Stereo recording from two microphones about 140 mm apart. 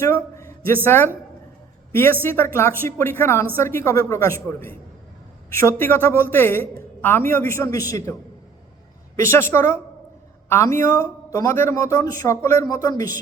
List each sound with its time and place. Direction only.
0.0 s a sound: 20° left (ahead or behind)
0.9 s a woman's voice: 15° left (ahead or behind)
2.2 s a woman's voice: 15° left (ahead or behind)
9.1 s a woman's voice: 20° left (ahead or behind)